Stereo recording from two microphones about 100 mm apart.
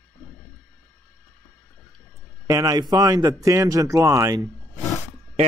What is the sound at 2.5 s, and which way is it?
Speech, 40° right (ahead or behind).